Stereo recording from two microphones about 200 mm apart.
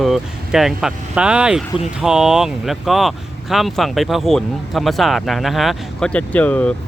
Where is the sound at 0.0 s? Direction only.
Centre (ahead or behind).